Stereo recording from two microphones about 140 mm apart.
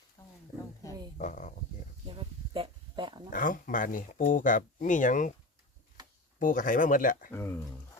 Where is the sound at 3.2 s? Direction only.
75° left (ahead or behind).